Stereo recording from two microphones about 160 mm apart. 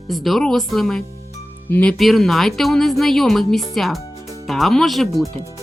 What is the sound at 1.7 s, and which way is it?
Speech, 10° left (ahead or behind).